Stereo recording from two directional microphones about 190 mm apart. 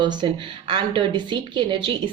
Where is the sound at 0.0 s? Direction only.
25° right (ahead or behind).